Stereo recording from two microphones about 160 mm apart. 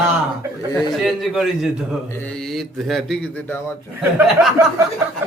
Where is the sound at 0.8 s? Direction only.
Centre (ahead or behind).